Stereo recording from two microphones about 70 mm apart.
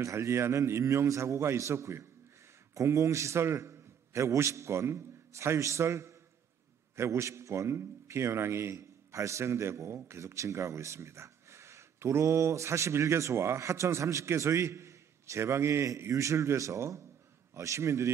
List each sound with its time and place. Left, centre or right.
0.0 s a man's voice: right